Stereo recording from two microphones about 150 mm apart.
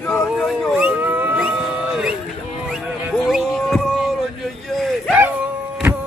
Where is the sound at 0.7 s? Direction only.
10° right (ahead or behind).